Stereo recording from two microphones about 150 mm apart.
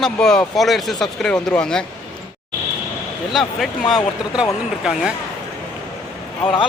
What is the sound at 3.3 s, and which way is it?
Speech, centre (ahead or behind).